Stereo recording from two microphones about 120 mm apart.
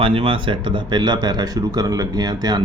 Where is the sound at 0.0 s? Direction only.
50° right (ahead or behind).